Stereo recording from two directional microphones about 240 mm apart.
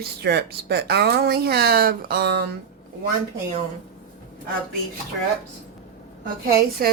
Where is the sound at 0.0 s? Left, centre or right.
Right.